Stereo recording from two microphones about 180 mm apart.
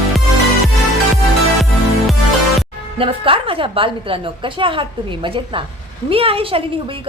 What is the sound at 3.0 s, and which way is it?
A woman's voice, 30° right (ahead or behind).